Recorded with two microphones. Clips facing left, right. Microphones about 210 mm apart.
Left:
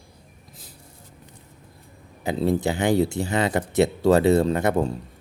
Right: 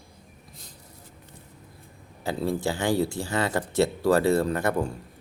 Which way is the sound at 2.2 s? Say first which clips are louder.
Left 4 dB; 20° left (ahead or behind).